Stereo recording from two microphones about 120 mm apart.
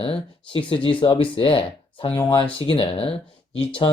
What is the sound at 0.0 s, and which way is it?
Speech, 50° left (ahead or behind).